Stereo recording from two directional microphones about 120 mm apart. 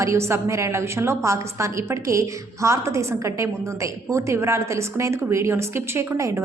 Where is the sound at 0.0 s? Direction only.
25° right (ahead or behind).